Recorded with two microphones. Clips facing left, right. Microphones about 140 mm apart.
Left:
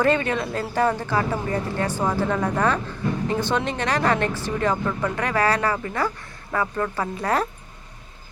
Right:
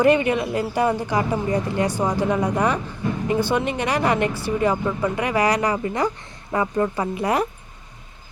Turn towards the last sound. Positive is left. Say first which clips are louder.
# right 2 dB
turn(degrees=-15)  # may be behind; listen again after turning